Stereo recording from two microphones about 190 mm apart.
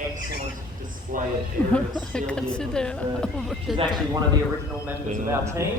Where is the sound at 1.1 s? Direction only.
45° right (ahead or behind).